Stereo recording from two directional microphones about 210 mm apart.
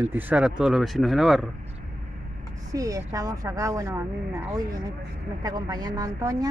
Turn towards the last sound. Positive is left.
turn(degrees=-15)  # may be behind; listen again after turning